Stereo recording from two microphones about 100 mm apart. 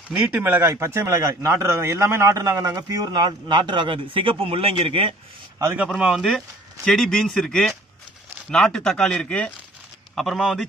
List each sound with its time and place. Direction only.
0.1 s speech: 20° right (ahead or behind); by 5.1 s 65° right (ahead or behind)
5.9 s speech: 5° right (ahead or behind)